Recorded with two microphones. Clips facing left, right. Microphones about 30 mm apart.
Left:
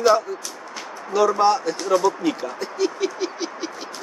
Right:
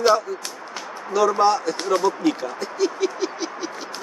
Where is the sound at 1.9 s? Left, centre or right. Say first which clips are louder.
Left 1 dB; right.